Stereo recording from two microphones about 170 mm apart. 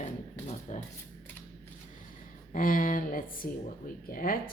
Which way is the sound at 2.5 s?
55° left (ahead or behind).